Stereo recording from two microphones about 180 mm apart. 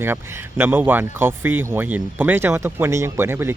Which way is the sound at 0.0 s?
10° right (ahead or behind).